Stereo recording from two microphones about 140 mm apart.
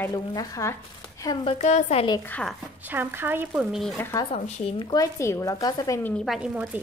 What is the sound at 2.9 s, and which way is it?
Speech, 15° right (ahead or behind).